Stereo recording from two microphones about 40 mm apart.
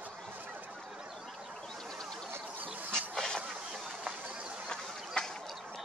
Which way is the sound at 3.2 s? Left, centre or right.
Centre.